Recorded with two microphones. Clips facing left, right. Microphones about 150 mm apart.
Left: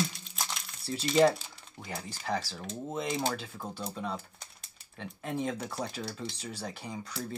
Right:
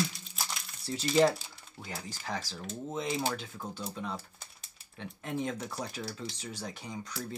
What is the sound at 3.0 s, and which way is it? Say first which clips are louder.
Speech: left 1 dB; 5° right (ahead or behind).